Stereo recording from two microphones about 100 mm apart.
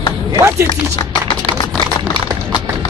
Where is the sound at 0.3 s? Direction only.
35° right (ahead or behind).